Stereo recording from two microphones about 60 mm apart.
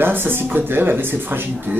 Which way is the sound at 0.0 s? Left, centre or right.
Right.